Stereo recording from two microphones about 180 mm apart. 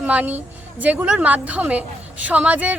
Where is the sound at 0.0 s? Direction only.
10° right (ahead or behind).